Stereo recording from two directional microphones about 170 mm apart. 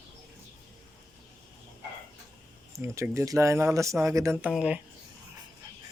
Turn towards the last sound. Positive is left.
turn(degrees=-5)  # may be behind; listen again after turning